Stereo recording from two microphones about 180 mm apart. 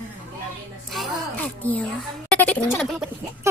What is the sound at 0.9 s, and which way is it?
A child's voice, 5° left (ahead or behind).